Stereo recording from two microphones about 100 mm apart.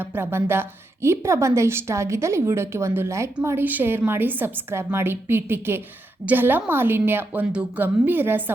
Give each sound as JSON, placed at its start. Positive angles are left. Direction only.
{"t": 0.0, "sound": "a woman's voice", "side_deg": -25}